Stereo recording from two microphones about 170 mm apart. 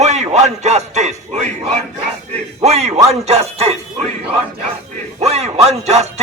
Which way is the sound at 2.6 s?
40° right (ahead or behind).